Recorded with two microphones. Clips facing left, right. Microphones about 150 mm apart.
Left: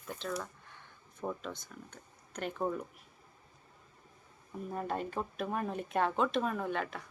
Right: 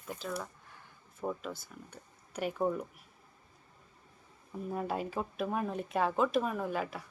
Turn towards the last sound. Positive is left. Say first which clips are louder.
# right 1 dB
turn(degrees=-5)  # may be behind; listen again after turning